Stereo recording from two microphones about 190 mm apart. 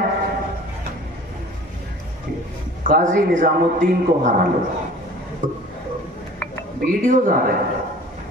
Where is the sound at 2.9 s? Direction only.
45° right (ahead or behind).